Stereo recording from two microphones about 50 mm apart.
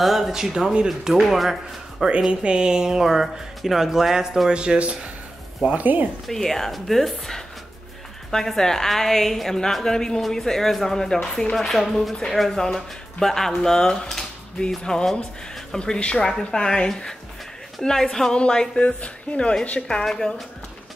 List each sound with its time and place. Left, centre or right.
0.0 s speech: centre
2.4 s speech: centre
5.8 s speech: right
6.2 s speech: centre
11.5 s speech: centre; by 19.5 s left
20.1 s speech: centre